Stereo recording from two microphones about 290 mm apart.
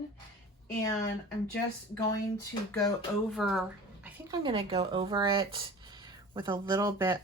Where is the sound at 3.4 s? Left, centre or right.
Centre.